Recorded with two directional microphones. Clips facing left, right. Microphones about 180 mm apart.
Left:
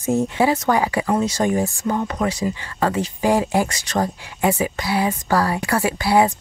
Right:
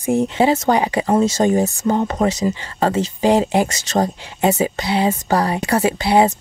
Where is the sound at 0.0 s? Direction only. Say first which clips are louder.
Right 2 dB; 15° right (ahead or behind).